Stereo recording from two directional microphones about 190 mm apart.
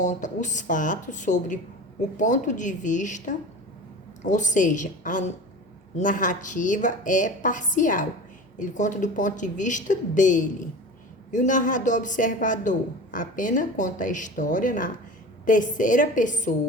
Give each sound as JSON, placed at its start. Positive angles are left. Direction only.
{"t": 0.0, "sound": "a woman's voice", "side_deg": 40}